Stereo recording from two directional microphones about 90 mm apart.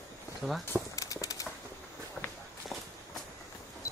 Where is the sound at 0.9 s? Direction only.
40° left (ahead or behind).